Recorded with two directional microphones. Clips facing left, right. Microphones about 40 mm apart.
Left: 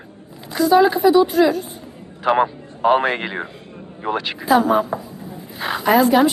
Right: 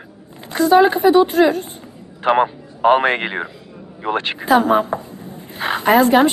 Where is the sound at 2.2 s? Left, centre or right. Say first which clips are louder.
Right 1 dB; right.